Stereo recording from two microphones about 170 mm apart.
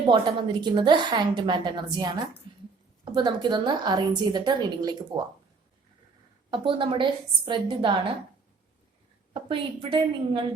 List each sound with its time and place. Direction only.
0.1 s a woman's voice: 30° right (ahead or behind)
6.5 s a woman's voice: 30° right (ahead or behind)
9.3 s a woman's voice: 30° right (ahead or behind)